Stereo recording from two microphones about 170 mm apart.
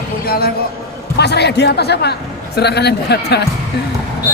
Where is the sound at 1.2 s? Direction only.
75° left (ahead or behind).